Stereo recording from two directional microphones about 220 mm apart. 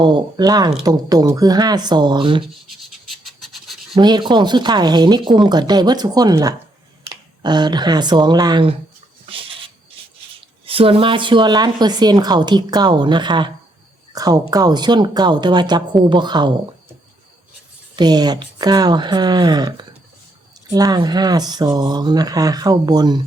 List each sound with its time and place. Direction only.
0.0 s speech: 20° right (ahead or behind)
2.6 s scratch: centre (ahead or behind)
3.9 s speech: 20° right (ahead or behind)
10.7 s speech: 25° right (ahead or behind)
17.9 s speech: 20° right (ahead or behind)